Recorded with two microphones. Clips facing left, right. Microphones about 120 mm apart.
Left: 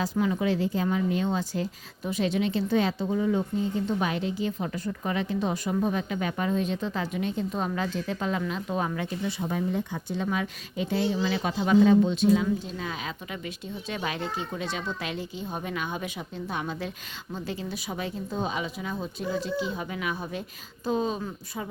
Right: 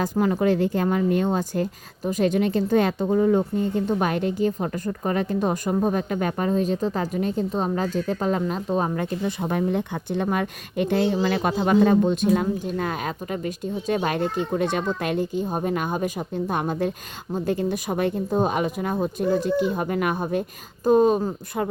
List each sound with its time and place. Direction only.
0.0 s a woman's voice: 50° right (ahead or behind)